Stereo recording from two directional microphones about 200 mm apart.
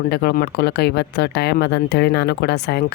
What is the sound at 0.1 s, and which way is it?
Speech, 55° left (ahead or behind).